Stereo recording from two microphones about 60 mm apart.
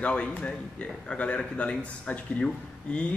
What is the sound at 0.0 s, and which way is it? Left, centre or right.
Speech, centre.